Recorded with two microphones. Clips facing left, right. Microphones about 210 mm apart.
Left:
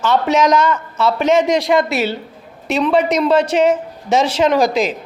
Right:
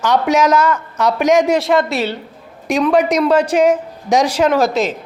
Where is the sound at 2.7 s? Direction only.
10° right (ahead or behind).